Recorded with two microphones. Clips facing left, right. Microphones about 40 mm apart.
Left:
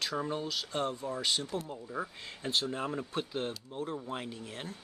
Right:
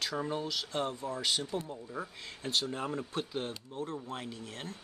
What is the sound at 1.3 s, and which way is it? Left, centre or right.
Speech, centre.